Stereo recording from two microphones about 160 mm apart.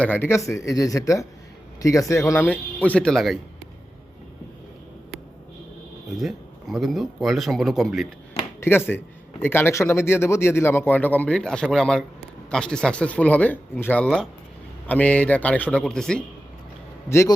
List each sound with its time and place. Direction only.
0.0 s speech: 10° left (ahead or behind)
6.1 s speech: centre (ahead or behind)
8.6 s speech: 15° left (ahead or behind)
17.1 s speech: 15° left (ahead or behind)